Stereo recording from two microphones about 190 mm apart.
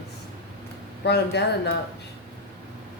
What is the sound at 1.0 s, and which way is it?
Speech, 65° left (ahead or behind).